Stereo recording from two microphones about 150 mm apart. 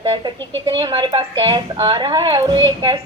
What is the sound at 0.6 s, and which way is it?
A man's voice, 30° right (ahead or behind).